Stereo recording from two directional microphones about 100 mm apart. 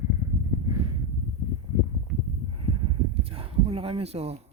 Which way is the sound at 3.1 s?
75° right (ahead or behind).